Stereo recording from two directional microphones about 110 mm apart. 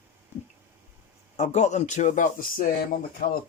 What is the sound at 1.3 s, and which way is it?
Speech, 90° left.